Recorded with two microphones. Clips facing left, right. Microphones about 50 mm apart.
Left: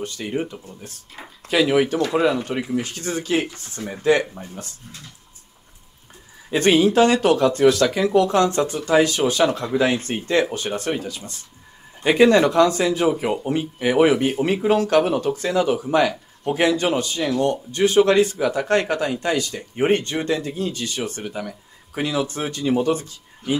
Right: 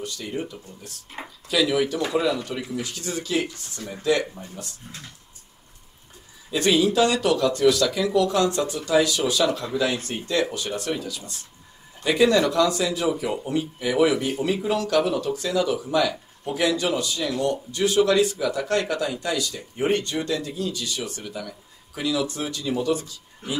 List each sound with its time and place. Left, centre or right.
0.0 s speech: left
1.2 s a sound: right
1.5 s speech: left
6.5 s speech: left